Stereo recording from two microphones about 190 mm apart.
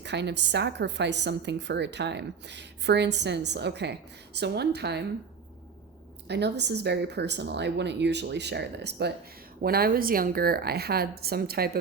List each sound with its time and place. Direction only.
0.0 s a woman's voice: 65° right (ahead or behind)
6.2 s a woman's voice: 65° right (ahead or behind)